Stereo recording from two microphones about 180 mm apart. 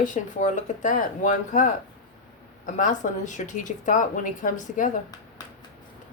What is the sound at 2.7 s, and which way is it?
Speech, 45° left (ahead or behind).